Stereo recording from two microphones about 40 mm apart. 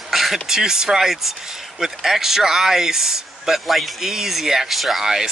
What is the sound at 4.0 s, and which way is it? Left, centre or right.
Speech, centre.